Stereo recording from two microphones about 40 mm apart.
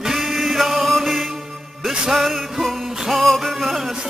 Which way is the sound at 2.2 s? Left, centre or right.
Centre.